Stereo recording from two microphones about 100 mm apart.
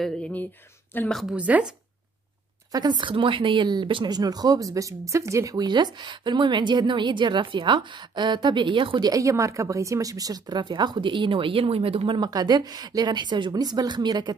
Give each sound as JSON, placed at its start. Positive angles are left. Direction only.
{"t": 0.0, "sound": "speech", "side_deg": 5}
{"t": 0.9, "sound": "a woman's voice", "side_deg": 20}
{"t": 1.3, "sound": "speech", "side_deg": -10}
{"t": 2.7, "sound": "a woman's voice", "side_deg": -45}
{"t": 9.1, "sound": "a woman's voice", "side_deg": -30}
{"t": 12.2, "sound": "a woman's voice", "side_deg": -45}